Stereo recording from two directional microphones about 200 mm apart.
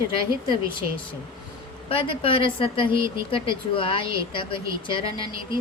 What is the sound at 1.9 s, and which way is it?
Speech, 25° left (ahead or behind).